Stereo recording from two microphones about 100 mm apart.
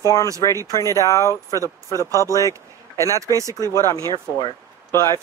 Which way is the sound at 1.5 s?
35° right (ahead or behind).